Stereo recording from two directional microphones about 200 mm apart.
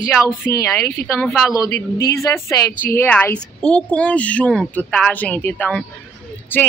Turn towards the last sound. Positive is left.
turn(degrees=10)  # may be behind; listen again after turning